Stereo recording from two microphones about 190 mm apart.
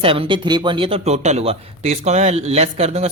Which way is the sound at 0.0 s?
30° right (ahead or behind).